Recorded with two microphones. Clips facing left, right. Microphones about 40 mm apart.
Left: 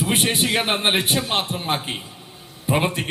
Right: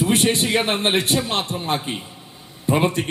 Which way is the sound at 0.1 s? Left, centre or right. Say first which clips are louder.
Right 2 dB; centre.